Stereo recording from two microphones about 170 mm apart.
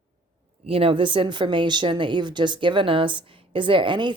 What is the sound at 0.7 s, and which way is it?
Speech, 35° right (ahead or behind).